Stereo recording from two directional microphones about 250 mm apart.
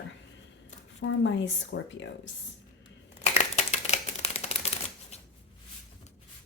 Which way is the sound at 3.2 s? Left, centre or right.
Left.